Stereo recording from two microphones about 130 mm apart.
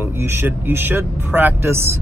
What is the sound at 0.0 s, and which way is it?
Speech, 20° right (ahead or behind).